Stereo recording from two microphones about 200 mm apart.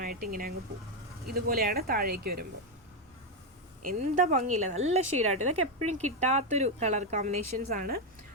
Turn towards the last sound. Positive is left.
turn(degrees=-45)  # may be behind; listen again after turning